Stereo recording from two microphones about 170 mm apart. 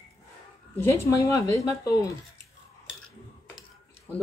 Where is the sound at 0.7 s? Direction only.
15° left (ahead or behind).